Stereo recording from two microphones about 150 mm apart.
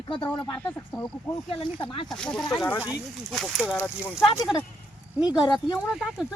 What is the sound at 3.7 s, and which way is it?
Speech, 10° left (ahead or behind).